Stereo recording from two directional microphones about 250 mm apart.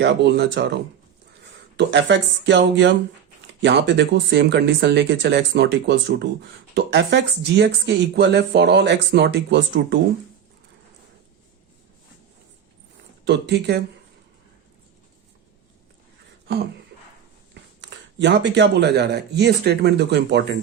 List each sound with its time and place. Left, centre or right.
0.0 s speech: right
13.2 s speech: right
17.5 s speech: right